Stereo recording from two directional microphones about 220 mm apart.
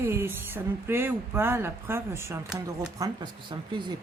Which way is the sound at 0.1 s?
10° right (ahead or behind).